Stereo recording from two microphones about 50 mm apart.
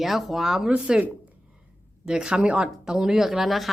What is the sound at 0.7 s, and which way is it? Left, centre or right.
A woman's voice, right.